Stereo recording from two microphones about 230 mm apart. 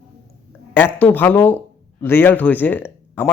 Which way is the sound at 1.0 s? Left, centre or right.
Centre.